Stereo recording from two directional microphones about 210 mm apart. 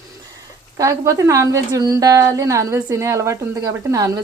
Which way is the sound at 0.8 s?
15° right (ahead or behind).